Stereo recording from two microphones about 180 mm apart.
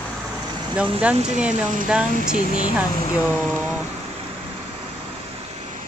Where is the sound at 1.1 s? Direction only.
35° right (ahead or behind).